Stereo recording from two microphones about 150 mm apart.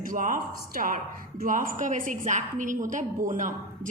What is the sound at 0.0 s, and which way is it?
A woman's voice, 60° right (ahead or behind).